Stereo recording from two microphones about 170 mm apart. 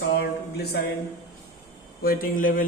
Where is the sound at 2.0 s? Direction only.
60° left (ahead or behind).